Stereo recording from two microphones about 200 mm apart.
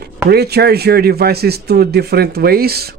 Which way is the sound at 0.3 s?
55° right (ahead or behind).